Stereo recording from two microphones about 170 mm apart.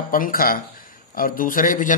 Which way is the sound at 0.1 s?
55° left (ahead or behind).